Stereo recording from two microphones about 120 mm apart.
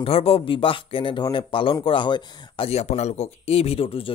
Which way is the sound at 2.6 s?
65° left (ahead or behind).